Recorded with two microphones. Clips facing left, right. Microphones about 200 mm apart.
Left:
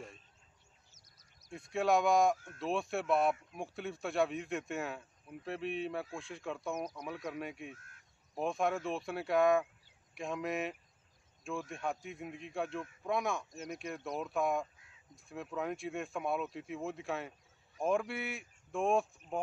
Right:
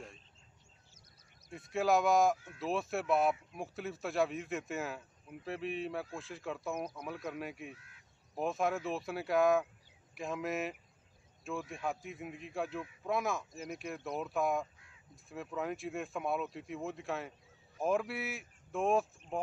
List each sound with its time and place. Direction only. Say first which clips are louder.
1.5 s speech: even; centre (ahead or behind)
2.3 s speech: even; 45° left (ahead or behind)
2.6 s speech: even; centre (ahead or behind)
7.7 s speech: even; 45° left (ahead or behind)
8.4 s speech: even; centre (ahead or behind)